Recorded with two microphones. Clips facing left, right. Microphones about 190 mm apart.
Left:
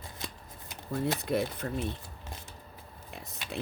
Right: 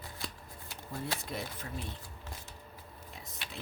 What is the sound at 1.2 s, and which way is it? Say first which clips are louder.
Speech: left 10 dB; 60° left (ahead or behind).